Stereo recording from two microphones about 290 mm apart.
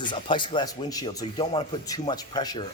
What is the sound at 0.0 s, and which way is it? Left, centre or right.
Speech, centre.